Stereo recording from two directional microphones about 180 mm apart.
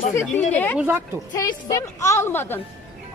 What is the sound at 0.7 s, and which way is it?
Speech, 10° right (ahead or behind).